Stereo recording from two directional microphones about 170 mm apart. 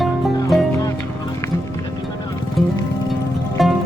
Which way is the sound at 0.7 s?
15° left (ahead or behind).